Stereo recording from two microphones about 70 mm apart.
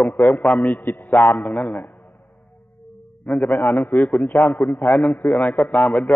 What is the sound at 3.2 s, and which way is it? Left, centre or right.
A man's voice, left.